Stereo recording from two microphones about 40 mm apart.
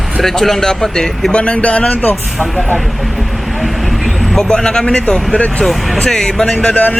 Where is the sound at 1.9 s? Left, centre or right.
Left.